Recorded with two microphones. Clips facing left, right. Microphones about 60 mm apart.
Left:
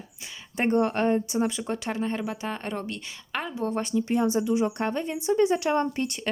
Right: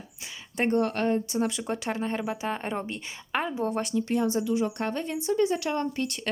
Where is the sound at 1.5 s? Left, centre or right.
Centre.